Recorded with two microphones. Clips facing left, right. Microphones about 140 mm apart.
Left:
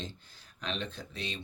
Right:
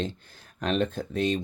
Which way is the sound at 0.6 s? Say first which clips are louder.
Right 11 dB; 50° right (ahead or behind).